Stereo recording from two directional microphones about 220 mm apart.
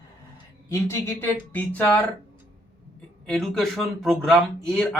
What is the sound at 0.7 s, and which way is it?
Speech, 10° left (ahead or behind).